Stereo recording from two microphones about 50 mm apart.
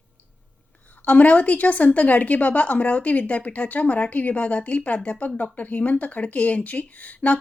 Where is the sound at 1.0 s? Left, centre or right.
Left.